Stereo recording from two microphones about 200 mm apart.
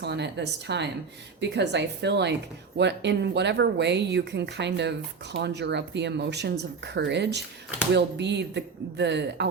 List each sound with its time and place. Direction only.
0.0 s speech: 60° right (ahead or behind)